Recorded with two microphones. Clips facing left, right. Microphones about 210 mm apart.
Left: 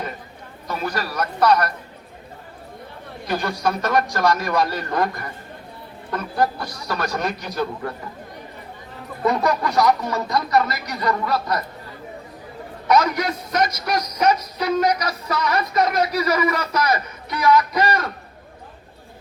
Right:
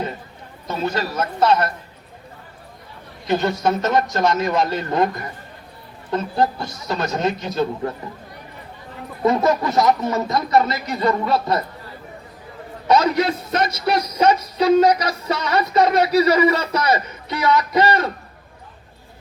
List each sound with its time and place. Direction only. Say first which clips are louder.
0.7 s speech: right 3 dB; 25° right (ahead or behind)
3.2 s speech: right 4 dB; 25° right (ahead or behind)
9.2 s speech: right 3 dB; 20° right (ahead or behind)
12.9 s speech: right 2 dB; 25° right (ahead or behind)